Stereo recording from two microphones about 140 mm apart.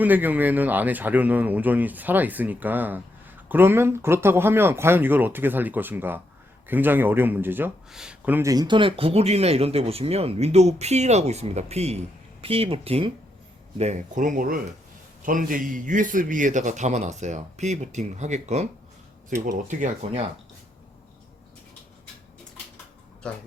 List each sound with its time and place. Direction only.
0.0 s speech: 10° right (ahead or behind)
8.4 s speech: 30° right (ahead or behind)
13.7 s speech: 55° right (ahead or behind); by 14.6 s 85° right
15.2 s a man's voice: 75° right (ahead or behind); by 18.7 s 55° right (ahead or behind)
19.5 s a man's voice: 65° right (ahead or behind)